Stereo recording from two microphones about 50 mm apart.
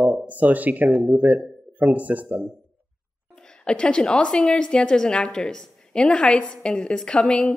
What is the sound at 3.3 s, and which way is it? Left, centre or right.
A woman's voice, centre.